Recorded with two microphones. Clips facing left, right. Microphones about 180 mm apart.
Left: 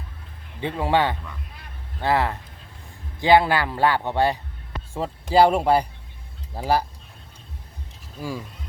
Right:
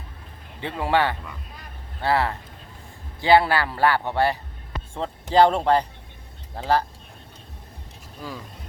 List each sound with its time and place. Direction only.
0.6 s a man's voice: 15° left (ahead or behind)
8.2 s a man's voice: 10° left (ahead or behind)